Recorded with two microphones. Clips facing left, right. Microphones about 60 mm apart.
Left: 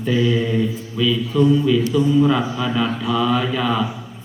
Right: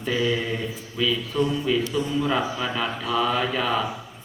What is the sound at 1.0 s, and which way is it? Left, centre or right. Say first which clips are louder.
Speech: left 5 dB; right.